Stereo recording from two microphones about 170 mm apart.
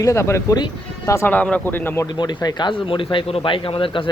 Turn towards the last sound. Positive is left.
turn(degrees=30)  # may be behind; listen again after turning